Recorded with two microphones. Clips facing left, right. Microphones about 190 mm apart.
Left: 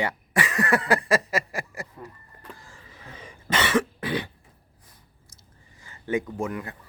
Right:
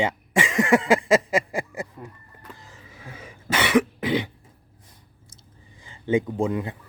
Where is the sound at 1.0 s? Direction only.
20° right (ahead or behind).